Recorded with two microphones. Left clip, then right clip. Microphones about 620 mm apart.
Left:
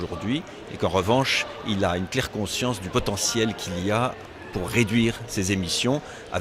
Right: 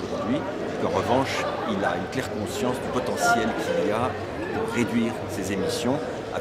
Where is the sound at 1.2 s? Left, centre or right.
Left.